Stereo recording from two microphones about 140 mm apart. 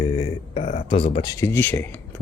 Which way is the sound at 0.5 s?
75° left (ahead or behind).